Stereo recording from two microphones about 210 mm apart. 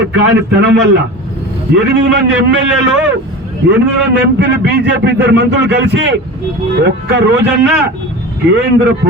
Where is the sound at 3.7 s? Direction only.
55° right (ahead or behind).